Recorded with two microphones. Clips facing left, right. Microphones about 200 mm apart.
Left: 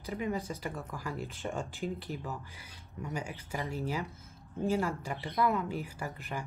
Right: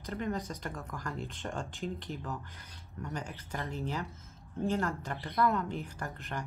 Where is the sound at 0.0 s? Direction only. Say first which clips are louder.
Left 1 dB; 10° left (ahead or behind).